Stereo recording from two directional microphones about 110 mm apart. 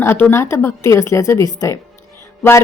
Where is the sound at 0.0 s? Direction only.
20° left (ahead or behind).